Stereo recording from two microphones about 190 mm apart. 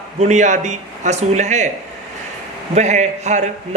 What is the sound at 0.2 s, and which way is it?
A man's voice, 40° right (ahead or behind).